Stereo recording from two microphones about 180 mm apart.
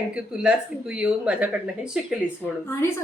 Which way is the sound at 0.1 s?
5° right (ahead or behind).